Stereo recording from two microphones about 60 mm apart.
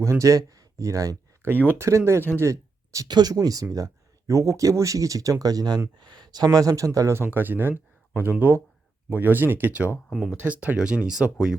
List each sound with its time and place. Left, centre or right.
0.0 s speech: right
1.4 s speech: right
1.8 s speech: right
2.4 s speech: right
7.1 s speech: right
10.8 s speech: centre